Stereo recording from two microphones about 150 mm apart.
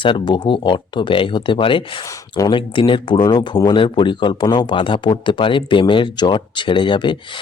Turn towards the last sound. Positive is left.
turn(degrees=30)  # may be behind; listen again after turning